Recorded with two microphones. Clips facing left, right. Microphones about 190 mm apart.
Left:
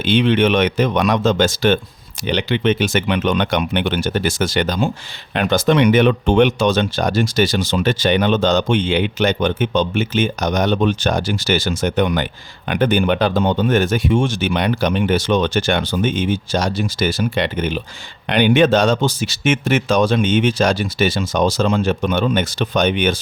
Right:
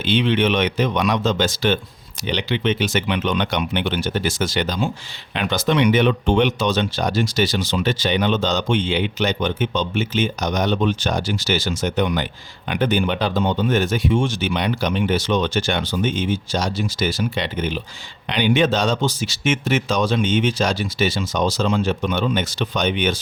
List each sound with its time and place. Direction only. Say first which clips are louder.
0.0 s speech: left 4 dB; 50° left (ahead or behind)